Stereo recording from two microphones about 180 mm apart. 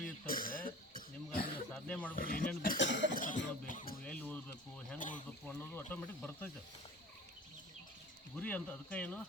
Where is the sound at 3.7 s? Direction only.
45° left (ahead or behind).